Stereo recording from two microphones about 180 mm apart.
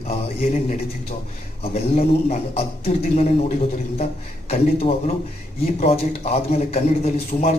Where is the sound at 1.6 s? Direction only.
35° left (ahead or behind).